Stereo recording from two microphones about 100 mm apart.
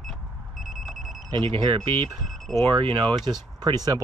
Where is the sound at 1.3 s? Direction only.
50° right (ahead or behind).